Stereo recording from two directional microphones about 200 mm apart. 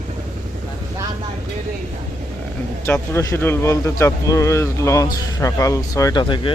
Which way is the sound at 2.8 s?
10° left (ahead or behind).